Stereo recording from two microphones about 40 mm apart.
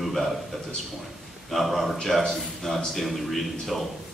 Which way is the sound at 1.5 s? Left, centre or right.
Centre.